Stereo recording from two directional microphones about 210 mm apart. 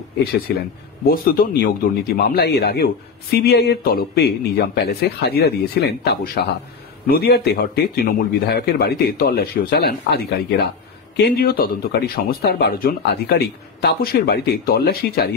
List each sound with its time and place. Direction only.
0.6 s speech: 45° left (ahead or behind)